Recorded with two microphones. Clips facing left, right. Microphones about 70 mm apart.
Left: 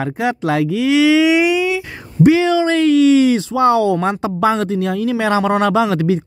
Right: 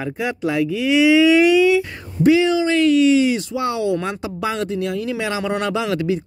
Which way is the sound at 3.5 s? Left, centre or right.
Left.